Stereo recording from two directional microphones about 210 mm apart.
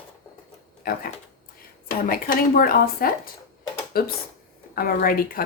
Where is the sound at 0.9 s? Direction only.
45° left (ahead or behind).